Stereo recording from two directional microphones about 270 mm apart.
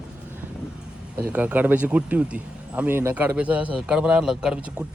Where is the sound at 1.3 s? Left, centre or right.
Centre.